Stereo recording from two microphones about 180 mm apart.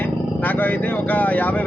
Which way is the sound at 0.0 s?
10° left (ahead or behind).